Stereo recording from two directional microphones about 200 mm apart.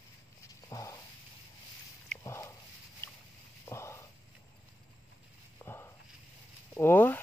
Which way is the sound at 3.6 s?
15° left (ahead or behind).